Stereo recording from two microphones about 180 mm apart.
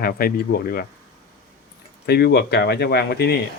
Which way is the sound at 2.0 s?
65° left (ahead or behind).